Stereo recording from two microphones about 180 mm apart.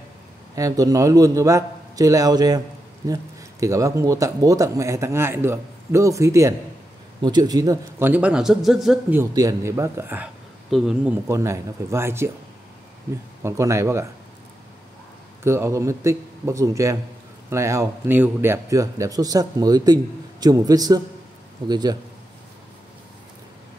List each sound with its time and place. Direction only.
0.6 s a man's voice: 20° right (ahead or behind); by 8.9 s centre (ahead or behind)
9.1 s a man's voice: 15° right (ahead or behind); by 11.1 s centre (ahead or behind)
11.2 s speech: 15° right (ahead or behind)
13.4 s speech: 15° right (ahead or behind)
15.4 s a man's voice: 15° right (ahead or behind)